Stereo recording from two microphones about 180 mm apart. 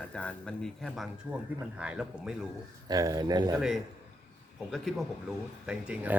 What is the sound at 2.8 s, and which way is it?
Speech, 20° right (ahead or behind).